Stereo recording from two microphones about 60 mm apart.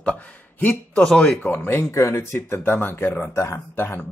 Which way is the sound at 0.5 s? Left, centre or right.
Left.